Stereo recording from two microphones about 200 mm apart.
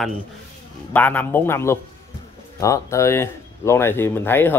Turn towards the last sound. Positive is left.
turn(degrees=10)  # may be behind; listen again after turning